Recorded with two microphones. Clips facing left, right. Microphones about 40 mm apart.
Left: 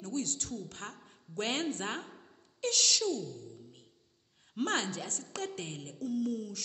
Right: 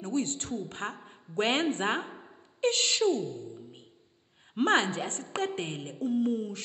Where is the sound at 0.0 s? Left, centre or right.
Right.